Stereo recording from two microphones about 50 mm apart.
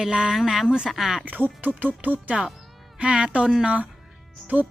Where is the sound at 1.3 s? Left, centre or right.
Right.